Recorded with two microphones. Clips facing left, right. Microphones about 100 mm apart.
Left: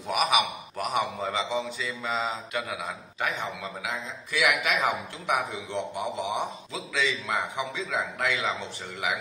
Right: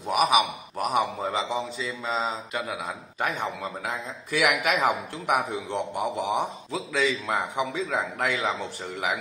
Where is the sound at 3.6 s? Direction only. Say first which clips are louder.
Right 2 dB; 40° right (ahead or behind).